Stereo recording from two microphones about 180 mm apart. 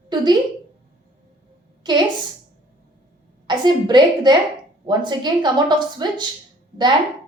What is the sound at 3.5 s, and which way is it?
Speech, 25° right (ahead or behind).